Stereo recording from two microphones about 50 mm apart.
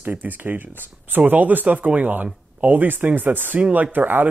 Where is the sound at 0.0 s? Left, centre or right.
Right.